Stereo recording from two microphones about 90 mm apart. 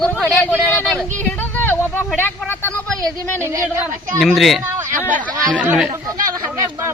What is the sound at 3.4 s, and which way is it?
Speech, 30° right (ahead or behind).